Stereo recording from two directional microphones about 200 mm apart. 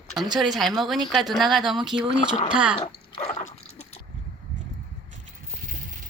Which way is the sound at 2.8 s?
35° left (ahead or behind).